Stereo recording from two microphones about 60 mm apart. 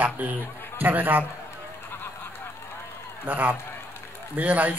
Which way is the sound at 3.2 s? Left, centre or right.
Right.